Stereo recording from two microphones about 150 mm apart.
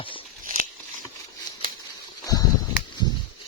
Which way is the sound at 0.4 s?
65° right (ahead or behind).